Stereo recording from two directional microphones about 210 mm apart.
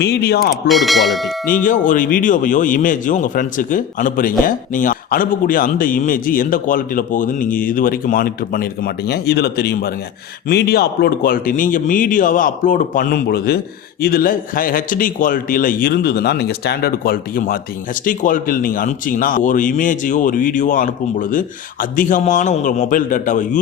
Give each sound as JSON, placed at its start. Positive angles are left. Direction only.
{"t": 0.0, "sound": "a man's voice", "side_deg": 50}
{"t": 0.7, "sound": "speech", "side_deg": 0}
{"t": 1.6, "sound": "a man's voice", "side_deg": 40}